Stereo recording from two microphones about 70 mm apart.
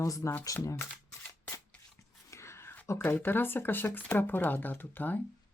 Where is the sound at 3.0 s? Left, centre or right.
Left.